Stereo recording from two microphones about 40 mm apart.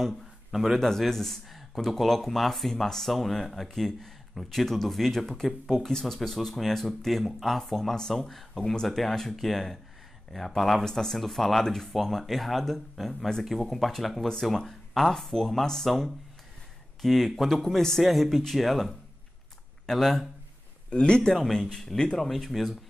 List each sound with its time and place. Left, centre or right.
0.0 s a sound: centre
0.7 s speech: centre
20.9 s a man's voice: left
22.3 s speech: centre